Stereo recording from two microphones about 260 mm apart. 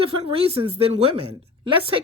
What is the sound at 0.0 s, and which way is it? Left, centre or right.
A woman's voice, right.